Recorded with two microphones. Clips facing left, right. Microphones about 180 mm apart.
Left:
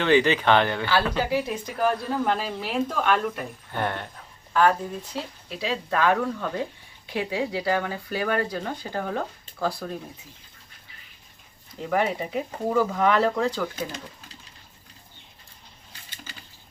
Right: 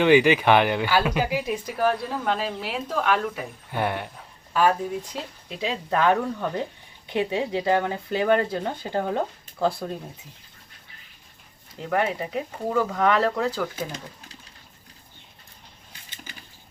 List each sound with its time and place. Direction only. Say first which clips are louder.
0.0 s speech: right 3 dB; 10° right (ahead or behind)
1.8 s speech: left 1 dB; centre (ahead or behind); by 9.9 s 20° right (ahead or behind)
11.8 s speech: even; centre (ahead or behind)